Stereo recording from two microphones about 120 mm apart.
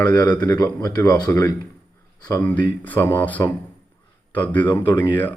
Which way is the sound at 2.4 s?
15° left (ahead or behind).